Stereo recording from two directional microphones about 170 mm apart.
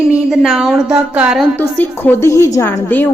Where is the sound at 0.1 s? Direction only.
5° right (ahead or behind).